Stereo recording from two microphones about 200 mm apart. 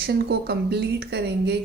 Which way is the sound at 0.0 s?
55° right (ahead or behind).